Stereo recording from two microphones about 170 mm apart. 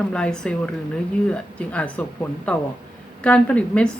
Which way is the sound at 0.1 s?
5° left (ahead or behind).